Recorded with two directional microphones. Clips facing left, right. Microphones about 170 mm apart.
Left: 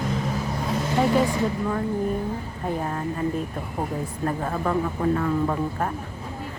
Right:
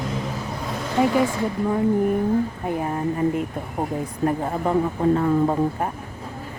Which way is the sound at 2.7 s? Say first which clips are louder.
Right 3 dB; 15° right (ahead or behind).